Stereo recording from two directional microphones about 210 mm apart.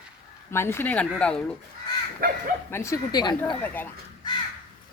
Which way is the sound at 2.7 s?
15° left (ahead or behind).